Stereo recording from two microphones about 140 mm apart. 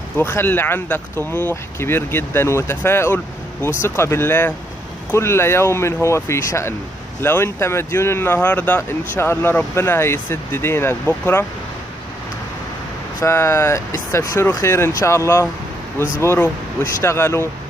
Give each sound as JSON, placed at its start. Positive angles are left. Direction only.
{"t": 0.2, "sound": "speech", "side_deg": 15}
{"t": 13.2, "sound": "speech", "side_deg": 20}